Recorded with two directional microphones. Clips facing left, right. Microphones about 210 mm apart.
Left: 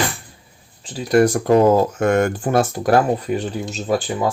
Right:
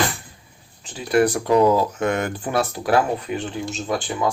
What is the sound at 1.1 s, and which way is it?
Speech, 45° left (ahead or behind).